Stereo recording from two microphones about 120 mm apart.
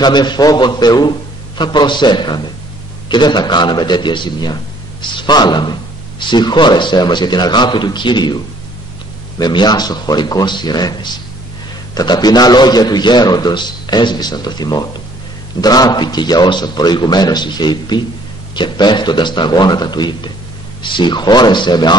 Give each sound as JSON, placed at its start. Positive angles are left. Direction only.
{"t": 0.0, "sound": "speech", "side_deg": 35}
{"t": 9.4, "sound": "speech", "side_deg": 35}